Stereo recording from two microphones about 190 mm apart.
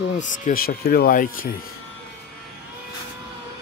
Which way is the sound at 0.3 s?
45° left (ahead or behind).